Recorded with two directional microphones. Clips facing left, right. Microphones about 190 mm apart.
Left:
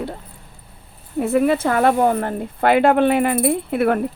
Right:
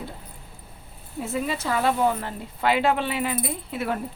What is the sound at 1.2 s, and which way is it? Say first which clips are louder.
Speech: left 11 dB; 60° left (ahead or behind).